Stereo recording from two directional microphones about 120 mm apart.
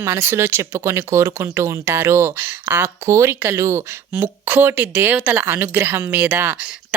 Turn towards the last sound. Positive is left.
turn(degrees=-10)  # may be behind; listen again after turning